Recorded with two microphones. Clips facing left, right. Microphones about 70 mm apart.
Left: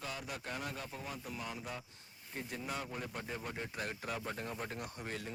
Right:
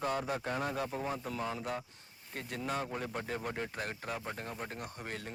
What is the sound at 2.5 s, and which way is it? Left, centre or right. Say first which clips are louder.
Speech: right 6 dB; right.